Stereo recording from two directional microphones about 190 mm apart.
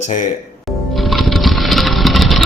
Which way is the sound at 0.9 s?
Centre (ahead or behind).